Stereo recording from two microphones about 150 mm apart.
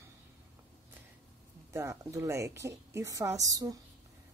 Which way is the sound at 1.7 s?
20° right (ahead or behind).